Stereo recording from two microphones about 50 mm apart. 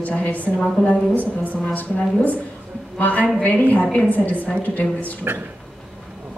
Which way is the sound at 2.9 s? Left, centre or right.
Left.